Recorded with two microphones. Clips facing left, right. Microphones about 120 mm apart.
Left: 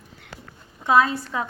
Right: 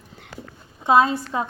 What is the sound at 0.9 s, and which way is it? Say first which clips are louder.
Speech: right 2 dB; 25° right (ahead or behind).